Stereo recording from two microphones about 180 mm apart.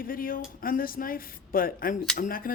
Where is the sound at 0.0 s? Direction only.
50° left (ahead or behind).